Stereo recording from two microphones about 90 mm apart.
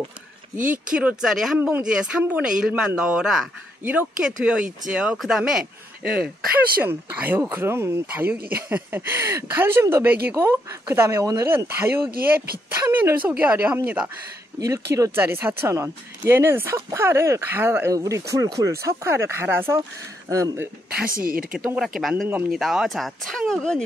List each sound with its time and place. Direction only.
0.7 s speech: 15° right (ahead or behind)
6.8 s speech: 20° right (ahead or behind)
14.6 s speech: 35° right (ahead or behind)
15.1 s speech: 25° right (ahead or behind)
17.9 s speech: 35° right (ahead or behind)
20.9 s speech: 10° right (ahead or behind); by 23.8 s 10° left (ahead or behind)